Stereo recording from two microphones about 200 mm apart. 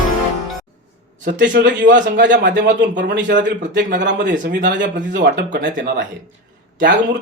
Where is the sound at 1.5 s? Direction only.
60° right (ahead or behind).